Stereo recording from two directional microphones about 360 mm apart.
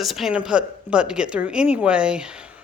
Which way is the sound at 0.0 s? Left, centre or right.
Centre.